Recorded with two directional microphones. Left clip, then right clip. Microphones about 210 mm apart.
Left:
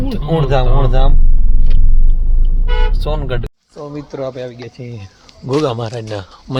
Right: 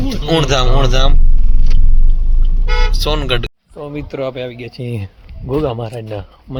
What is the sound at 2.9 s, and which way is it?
Speech, centre (ahead or behind).